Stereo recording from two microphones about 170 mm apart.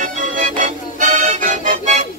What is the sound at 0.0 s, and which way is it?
Music, 50° right (ahead or behind).